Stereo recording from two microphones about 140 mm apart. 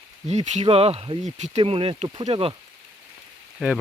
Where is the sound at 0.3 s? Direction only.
50° right (ahead or behind).